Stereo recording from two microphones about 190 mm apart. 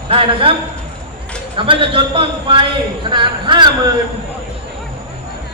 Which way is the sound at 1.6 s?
25° right (ahead or behind).